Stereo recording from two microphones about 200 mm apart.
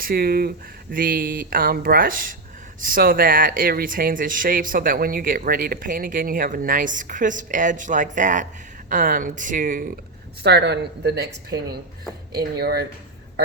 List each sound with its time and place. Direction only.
0.0 s speech: 45° right (ahead or behind)
10.4 s speech: 55° right (ahead or behind)
12.4 s speech: 50° right (ahead or behind)